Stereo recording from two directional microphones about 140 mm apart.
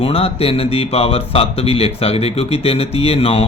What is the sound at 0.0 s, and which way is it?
Speech, 45° left (ahead or behind).